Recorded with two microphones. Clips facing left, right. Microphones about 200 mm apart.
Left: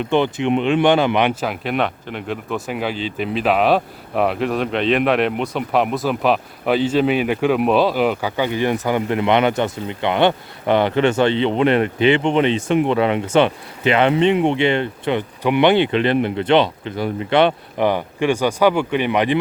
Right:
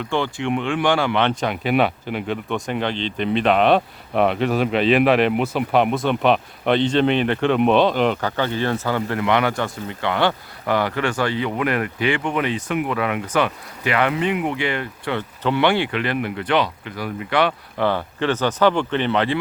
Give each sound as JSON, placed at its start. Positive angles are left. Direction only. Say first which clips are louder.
{"t": 0.0, "sound": "speech", "louder": "left 5 dB", "side_deg": 20}